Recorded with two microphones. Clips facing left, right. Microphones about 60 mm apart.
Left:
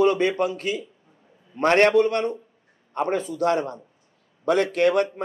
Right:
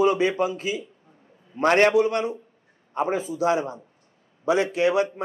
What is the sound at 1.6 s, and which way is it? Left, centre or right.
A man's voice, centre.